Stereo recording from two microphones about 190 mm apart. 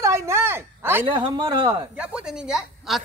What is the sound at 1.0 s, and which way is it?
Speech, 25° right (ahead or behind).